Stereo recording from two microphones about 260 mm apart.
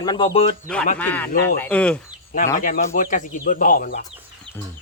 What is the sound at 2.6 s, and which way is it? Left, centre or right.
Speech, left.